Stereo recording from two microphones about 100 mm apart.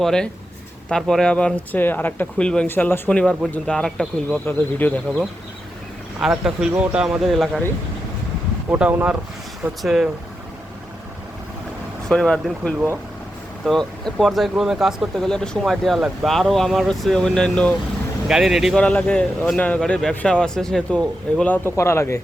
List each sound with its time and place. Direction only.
0.0 s speech: 5° left (ahead or behind)
4.4 s speech: 20° left (ahead or behind)
6.2 s speech: 5° right (ahead or behind)
8.7 s speech: 20° right (ahead or behind)
9.8 s speech: 5° right (ahead or behind)
12.0 s speech: 10° left (ahead or behind)
18.3 s speech: 5° right (ahead or behind)
18.8 s speech: 10° left (ahead or behind)
21.3 s speech: 15° left (ahead or behind)
21.8 s speech: 25° left (ahead or behind)